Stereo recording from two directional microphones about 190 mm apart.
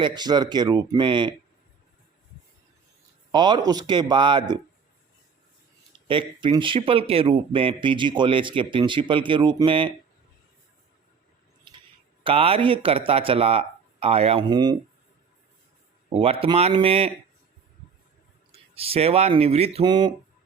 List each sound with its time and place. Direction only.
0.0 s speech: 20° right (ahead or behind)
3.3 s speech: 25° right (ahead or behind)
6.1 s speech: 25° right (ahead or behind)
12.2 s speech: 30° right (ahead or behind)
16.1 s speech: 30° right (ahead or behind)
18.5 s speech: 30° right (ahead or behind)